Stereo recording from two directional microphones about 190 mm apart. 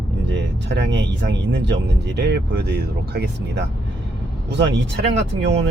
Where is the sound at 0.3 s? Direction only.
70° right (ahead or behind).